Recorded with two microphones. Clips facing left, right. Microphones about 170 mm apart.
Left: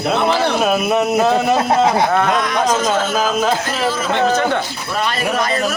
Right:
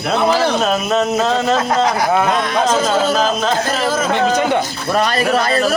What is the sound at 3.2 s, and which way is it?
Speech, 10° left (ahead or behind).